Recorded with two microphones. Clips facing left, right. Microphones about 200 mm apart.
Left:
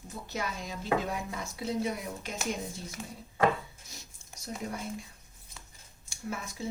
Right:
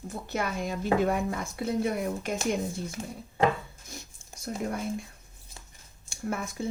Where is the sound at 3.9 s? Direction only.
55° right (ahead or behind).